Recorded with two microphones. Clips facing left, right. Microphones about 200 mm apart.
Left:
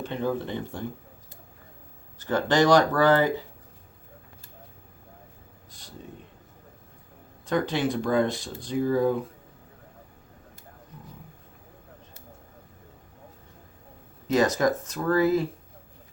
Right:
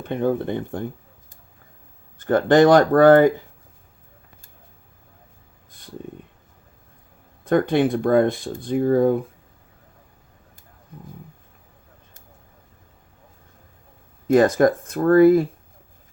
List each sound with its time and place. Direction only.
0.0 s speech: 55° right (ahead or behind)
2.1 s speech: 55° right (ahead or behind)
7.4 s speech: 55° right (ahead or behind)
14.3 s speech: 55° right (ahead or behind)